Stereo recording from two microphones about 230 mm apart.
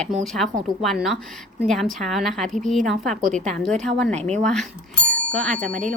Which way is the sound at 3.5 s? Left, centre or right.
Centre.